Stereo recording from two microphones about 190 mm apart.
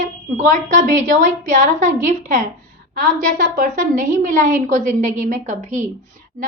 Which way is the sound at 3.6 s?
45° right (ahead or behind).